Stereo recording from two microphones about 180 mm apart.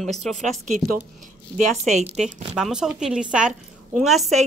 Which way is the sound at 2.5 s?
5° right (ahead or behind).